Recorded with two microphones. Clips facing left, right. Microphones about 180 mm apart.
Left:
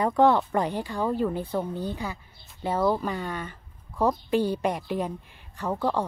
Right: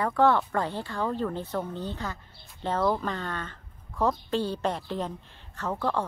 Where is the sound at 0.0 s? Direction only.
20° left (ahead or behind).